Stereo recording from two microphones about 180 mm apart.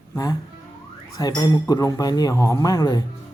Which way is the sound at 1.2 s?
20° left (ahead or behind).